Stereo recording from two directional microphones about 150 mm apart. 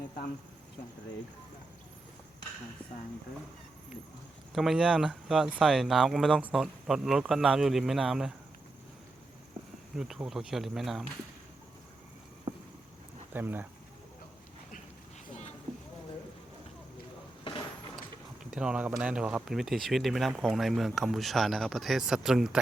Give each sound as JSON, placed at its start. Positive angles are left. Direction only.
{"t": 4.5, "sound": "speech", "side_deg": 0}
{"t": 9.9, "sound": "speech", "side_deg": -5}
{"t": 12.5, "sound": "boat", "side_deg": -40}
{"t": 13.3, "sound": "speech", "side_deg": -15}
{"t": 18.5, "sound": "speech", "side_deg": -5}